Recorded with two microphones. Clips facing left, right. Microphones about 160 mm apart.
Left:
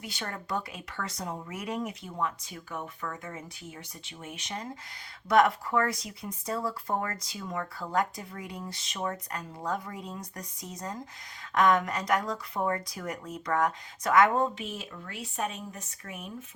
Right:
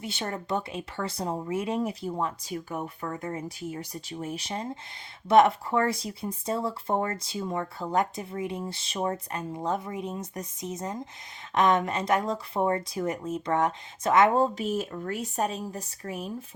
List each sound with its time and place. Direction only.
0.0 s speech: 25° right (ahead or behind)